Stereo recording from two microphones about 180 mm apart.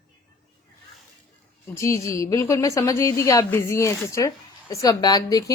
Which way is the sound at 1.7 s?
15° left (ahead or behind).